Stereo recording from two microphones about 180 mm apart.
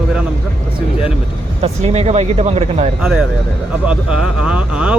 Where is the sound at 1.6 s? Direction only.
35° right (ahead or behind).